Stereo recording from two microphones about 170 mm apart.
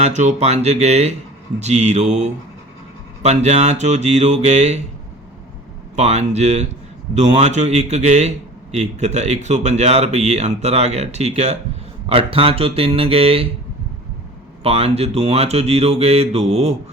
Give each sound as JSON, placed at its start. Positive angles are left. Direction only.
{"t": 0.0, "sound": "speech", "side_deg": -40}
{"t": 6.0, "sound": "speech", "side_deg": -40}
{"t": 14.6, "sound": "speech", "side_deg": -35}